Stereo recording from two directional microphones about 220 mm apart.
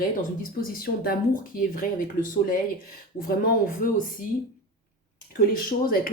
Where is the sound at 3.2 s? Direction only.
40° left (ahead or behind).